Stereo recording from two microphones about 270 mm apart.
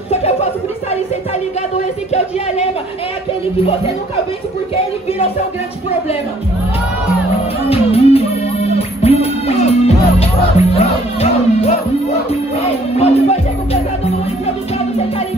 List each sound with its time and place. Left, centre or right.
0.1 s a sound: left
2.1 s speech: left
7.7 s music: left